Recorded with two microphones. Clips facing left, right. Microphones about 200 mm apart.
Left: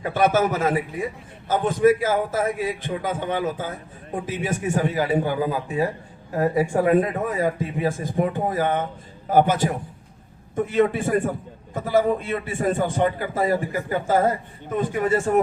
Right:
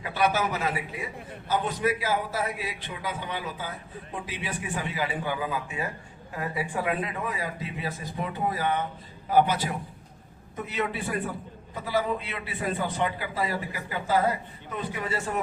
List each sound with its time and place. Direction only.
0.0 s a man's voice: 45° left (ahead or behind)